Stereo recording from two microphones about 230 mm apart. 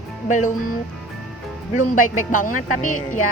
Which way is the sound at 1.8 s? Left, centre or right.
Left.